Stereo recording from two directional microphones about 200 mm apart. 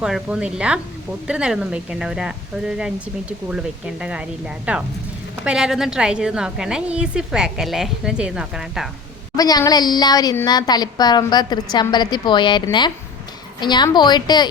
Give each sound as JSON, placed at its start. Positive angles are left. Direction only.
{"t": 0.0, "sound": "speech", "side_deg": -5}
{"t": 9.3, "sound": "a woman's voice", "side_deg": 20}